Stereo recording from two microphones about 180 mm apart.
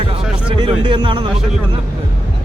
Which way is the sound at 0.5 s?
25° right (ahead or behind).